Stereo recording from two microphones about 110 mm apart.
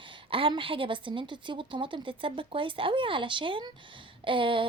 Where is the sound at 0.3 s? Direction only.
55° right (ahead or behind).